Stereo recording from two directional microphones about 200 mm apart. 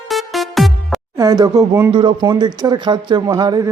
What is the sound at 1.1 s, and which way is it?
Speech, 15° right (ahead or behind).